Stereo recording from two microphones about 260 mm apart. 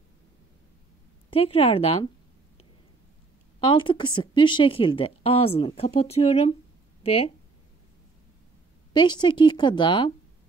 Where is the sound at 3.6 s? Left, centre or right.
Centre.